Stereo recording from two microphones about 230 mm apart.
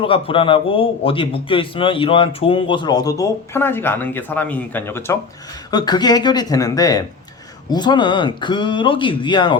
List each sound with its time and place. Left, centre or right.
0.0 s a man's voice: left